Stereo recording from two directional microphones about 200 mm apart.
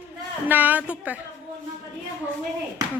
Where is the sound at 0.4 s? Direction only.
10° right (ahead or behind).